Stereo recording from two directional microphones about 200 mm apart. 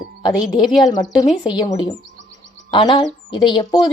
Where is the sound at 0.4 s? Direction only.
Centre (ahead or behind).